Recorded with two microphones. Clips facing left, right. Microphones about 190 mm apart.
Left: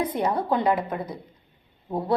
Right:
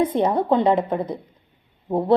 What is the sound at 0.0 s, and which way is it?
A woman's voice, 25° right (ahead or behind).